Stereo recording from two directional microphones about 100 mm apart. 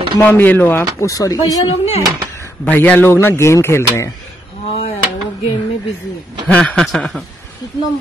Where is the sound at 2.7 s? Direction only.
15° left (ahead or behind).